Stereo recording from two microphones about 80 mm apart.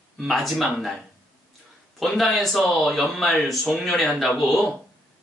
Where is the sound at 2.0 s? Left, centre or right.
Centre.